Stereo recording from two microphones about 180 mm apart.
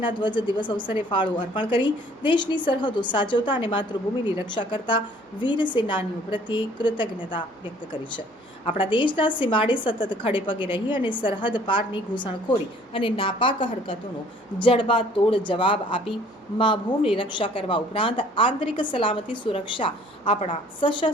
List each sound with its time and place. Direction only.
0.0 s a woman's voice: 25° left (ahead or behind)
8.6 s a woman's voice: 30° left (ahead or behind)